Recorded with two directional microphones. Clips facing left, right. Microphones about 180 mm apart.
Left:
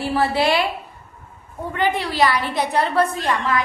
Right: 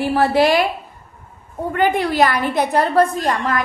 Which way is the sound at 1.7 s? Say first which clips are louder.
Right 5 dB; 50° right (ahead or behind).